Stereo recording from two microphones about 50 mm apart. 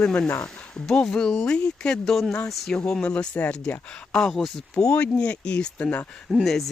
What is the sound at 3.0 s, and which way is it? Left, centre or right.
Speech, left.